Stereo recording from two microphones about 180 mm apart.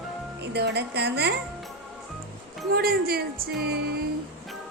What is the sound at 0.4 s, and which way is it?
Speech, 65° right (ahead or behind).